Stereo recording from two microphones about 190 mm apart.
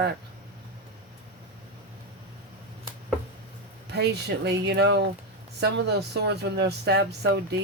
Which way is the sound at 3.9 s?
60° right (ahead or behind).